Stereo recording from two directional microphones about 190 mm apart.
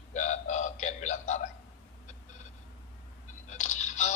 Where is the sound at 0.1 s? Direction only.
40° left (ahead or behind).